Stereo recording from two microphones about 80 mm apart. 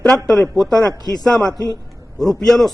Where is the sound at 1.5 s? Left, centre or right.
Left.